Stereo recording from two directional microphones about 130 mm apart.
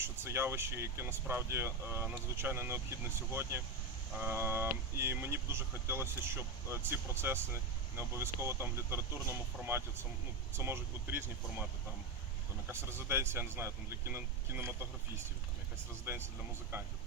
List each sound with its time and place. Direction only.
0.0 s speech: 20° right (ahead or behind)
4.2 s speech: 15° right (ahead or behind)
12.6 s speech: 20° right (ahead or behind)
16.1 s speech: 15° right (ahead or behind)